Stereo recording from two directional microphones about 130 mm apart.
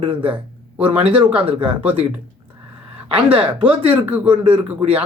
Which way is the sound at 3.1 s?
45° right (ahead or behind).